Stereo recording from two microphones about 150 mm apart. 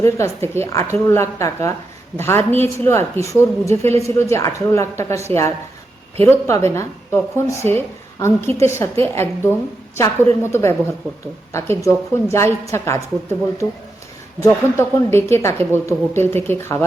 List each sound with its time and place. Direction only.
0.0 s a woman's voice: 15° left (ahead or behind)
14.4 s speech: 20° left (ahead or behind)